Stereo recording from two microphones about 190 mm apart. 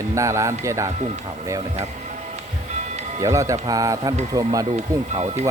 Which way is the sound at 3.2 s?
15° right (ahead or behind).